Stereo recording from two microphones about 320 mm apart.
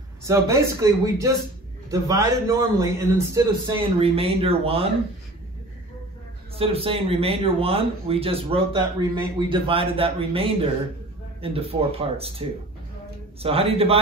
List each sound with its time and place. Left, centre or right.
0.2 s a man's voice: centre
6.5 s a man's voice: centre